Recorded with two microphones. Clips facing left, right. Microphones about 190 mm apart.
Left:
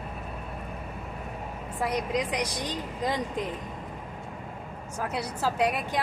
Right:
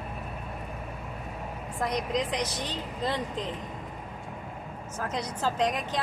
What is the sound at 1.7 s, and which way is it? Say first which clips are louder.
A woman's voice: left 1 dB; 5° left (ahead or behind).